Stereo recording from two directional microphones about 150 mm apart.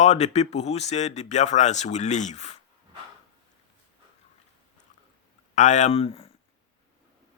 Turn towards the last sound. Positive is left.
turn(degrees=40)  # may be behind; listen again after turning